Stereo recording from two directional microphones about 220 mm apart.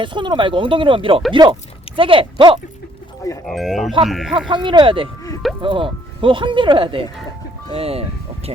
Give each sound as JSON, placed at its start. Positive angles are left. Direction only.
{"t": 0.0, "sound": "speech", "side_deg": -20}
{"t": 3.4, "sound": "speech", "side_deg": 0}
{"t": 4.3, "sound": "speech", "side_deg": -20}